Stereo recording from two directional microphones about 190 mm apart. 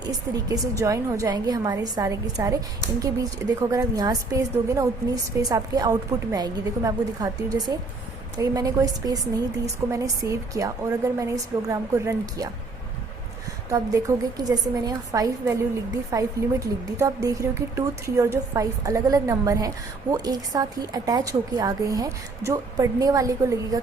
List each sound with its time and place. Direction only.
0.1 s a woman's voice: 20° right (ahead or behind)
10.5 s a woman's voice: 15° right (ahead or behind)
13.7 s a woman's voice: 20° right (ahead or behind)